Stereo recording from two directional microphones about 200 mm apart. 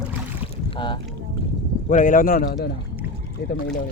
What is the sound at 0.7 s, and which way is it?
Boat, 25° left (ahead or behind).